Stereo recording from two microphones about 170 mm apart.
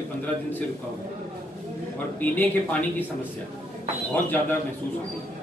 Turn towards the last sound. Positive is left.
turn(degrees=10)  # may be behind; listen again after turning